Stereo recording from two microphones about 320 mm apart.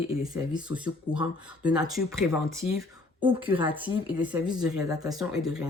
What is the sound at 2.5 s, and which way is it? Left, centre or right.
Speech, centre.